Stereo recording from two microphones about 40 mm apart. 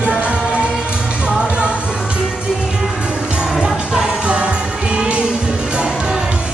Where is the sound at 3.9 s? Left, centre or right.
Right.